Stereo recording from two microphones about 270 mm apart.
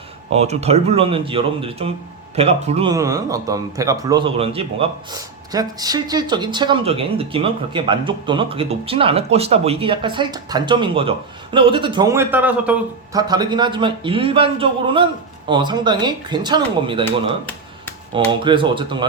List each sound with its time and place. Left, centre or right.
0.3 s a man's voice: right
18.1 s a man's voice: centre